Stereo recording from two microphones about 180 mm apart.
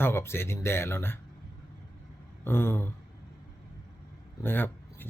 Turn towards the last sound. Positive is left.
turn(degrees=10)  # may be behind; listen again after turning